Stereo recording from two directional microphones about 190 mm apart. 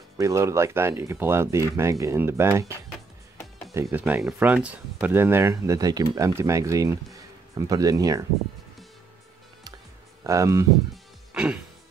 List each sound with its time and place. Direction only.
0.2 s speech: 15° right (ahead or behind)
3.7 s speech: 10° right (ahead or behind)
10.2 s speech: 15° right (ahead or behind)